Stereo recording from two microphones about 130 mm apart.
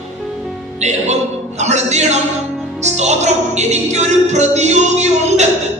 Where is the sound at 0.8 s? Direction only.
60° right (ahead or behind).